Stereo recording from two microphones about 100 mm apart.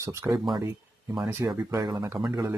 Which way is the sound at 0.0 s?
30° right (ahead or behind).